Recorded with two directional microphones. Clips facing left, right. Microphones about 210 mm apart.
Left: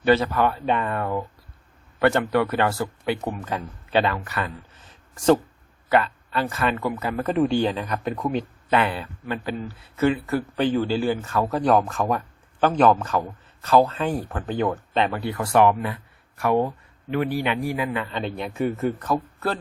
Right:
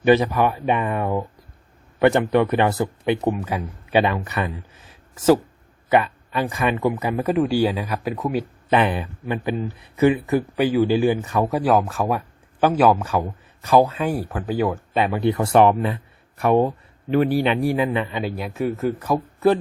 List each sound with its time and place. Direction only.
0.0 s speech: 15° right (ahead or behind)
3.4 s speech: 10° right (ahead or behind)
15.2 s speech: 20° right (ahead or behind)
18.1 s speech: 5° right (ahead or behind)